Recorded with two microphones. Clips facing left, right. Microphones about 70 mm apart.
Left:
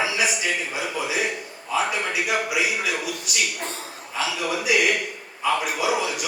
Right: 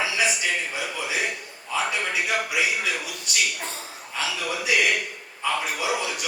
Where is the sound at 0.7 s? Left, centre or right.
Centre.